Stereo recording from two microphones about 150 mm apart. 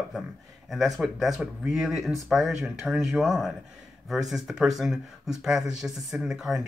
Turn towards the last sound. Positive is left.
turn(degrees=-5)  # may be behind; listen again after turning